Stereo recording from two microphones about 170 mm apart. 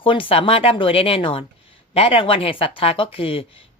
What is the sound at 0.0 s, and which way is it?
Speech, 30° left (ahead or behind).